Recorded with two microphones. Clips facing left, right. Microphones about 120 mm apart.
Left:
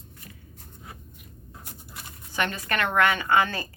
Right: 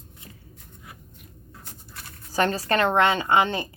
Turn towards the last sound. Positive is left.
turn(degrees=-20)  # may be behind; listen again after turning